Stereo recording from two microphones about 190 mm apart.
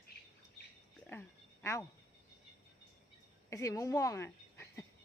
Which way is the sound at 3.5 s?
15° left (ahead or behind).